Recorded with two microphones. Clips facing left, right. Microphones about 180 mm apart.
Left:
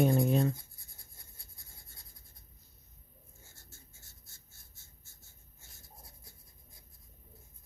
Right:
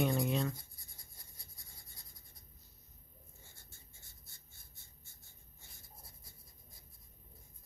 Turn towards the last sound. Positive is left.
turn(degrees=0)  # may be behind; listen again after turning